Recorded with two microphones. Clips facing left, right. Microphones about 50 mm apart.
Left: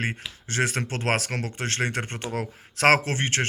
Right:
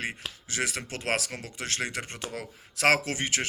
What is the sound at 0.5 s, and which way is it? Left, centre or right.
Speech, left.